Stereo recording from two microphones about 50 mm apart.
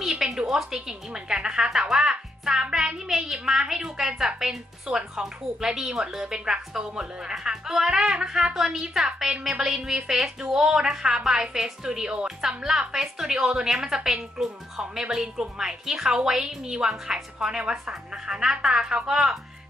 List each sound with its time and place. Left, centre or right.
0.4 s speech: centre